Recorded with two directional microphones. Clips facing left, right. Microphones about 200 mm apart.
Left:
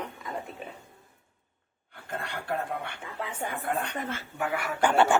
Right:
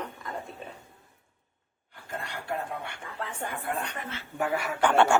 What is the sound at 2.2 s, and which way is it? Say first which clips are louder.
Speech: left 2 dB; 55° left (ahead or behind).